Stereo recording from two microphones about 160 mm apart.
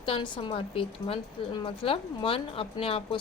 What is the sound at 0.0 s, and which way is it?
Speech, 30° left (ahead or behind).